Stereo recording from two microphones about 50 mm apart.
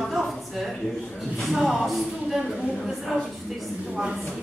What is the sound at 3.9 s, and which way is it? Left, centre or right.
Speech, centre.